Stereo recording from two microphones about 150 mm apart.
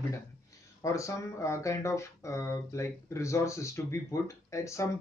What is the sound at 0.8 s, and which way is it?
Speech, 20° left (ahead or behind).